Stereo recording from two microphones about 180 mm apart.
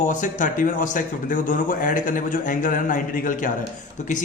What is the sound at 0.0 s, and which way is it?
A man's voice, 45° left (ahead or behind).